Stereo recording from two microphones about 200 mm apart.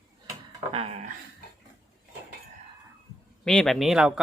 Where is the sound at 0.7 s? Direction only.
30° right (ahead or behind).